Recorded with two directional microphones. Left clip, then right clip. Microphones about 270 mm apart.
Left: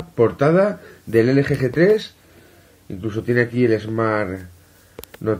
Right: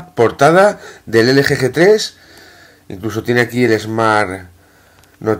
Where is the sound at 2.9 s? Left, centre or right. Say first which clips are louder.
Right 5 dB; centre.